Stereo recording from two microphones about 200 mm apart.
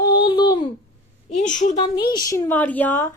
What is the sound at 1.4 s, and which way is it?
Speech, 40° left (ahead or behind).